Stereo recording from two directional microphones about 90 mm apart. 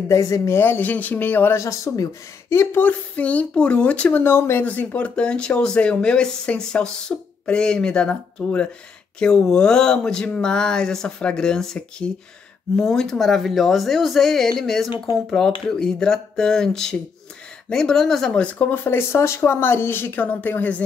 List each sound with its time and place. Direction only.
0.1 s speech: 35° left (ahead or behind); by 1.6 s 20° left (ahead or behind)
1.6 s speech: 35° left (ahead or behind)
2.8 s speech: 20° left (ahead or behind)
4.2 s speech: 25° left (ahead or behind)
4.6 s speech: 15° left (ahead or behind)